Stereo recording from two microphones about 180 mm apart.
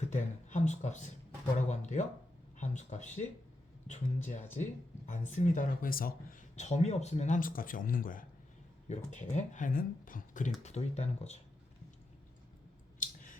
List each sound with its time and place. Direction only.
0.1 s speech: 40° left (ahead or behind)
13.0 s scissors: 45° left (ahead or behind)